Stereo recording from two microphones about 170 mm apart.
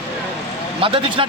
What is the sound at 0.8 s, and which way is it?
Speech, 30° right (ahead or behind).